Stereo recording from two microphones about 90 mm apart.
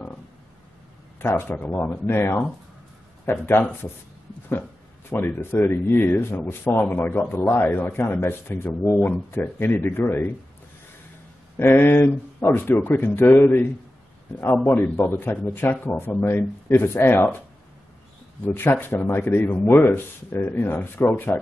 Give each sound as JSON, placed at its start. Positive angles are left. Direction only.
{"t": 1.2, "sound": "speech", "side_deg": 25}
{"t": 5.1, "sound": "speech", "side_deg": 25}
{"t": 11.5, "sound": "speech", "side_deg": 25}
{"t": 18.4, "sound": "speech", "side_deg": 25}